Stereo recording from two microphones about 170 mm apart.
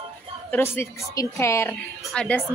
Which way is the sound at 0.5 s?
15° left (ahead or behind).